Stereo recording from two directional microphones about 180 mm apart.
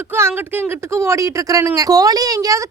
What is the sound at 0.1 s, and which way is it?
Speech, 15° right (ahead or behind).